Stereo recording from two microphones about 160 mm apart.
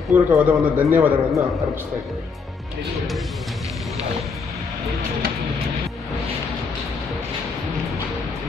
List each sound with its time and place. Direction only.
0.1 s speech: 10° right (ahead or behind)